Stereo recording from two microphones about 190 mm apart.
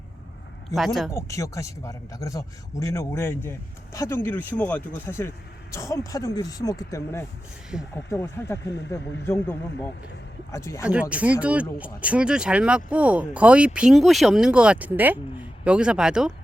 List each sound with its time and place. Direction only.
0.8 s speech: centre (ahead or behind)
1.1 s a man's voice: 15° left (ahead or behind)
11.1 s speech: 5° right (ahead or behind)